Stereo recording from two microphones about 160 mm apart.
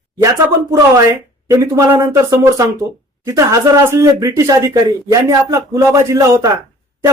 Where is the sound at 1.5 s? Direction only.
20° right (ahead or behind).